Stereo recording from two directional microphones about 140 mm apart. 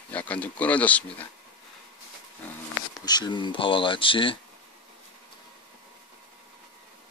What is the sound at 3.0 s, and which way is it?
Speech, 30° left (ahead or behind).